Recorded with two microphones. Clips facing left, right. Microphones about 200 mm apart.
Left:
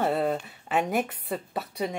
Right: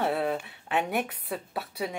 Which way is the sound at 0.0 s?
Centre (ahead or behind).